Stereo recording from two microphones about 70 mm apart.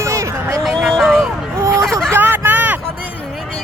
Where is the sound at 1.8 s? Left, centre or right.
Centre.